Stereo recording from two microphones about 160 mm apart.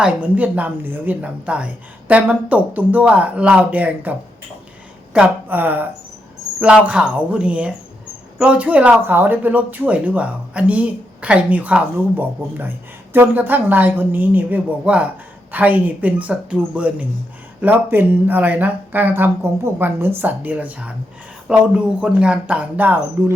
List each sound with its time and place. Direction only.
0.0 s speech: 10° right (ahead or behind)
5.1 s speech: 10° right (ahead or behind)